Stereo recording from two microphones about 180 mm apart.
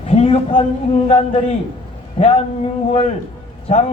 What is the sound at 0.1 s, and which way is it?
Speech, 30° left (ahead or behind).